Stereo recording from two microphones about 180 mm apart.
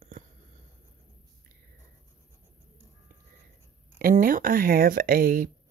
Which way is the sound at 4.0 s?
50° right (ahead or behind).